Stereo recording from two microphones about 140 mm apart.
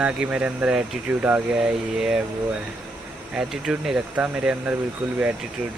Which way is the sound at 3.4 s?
5° right (ahead or behind).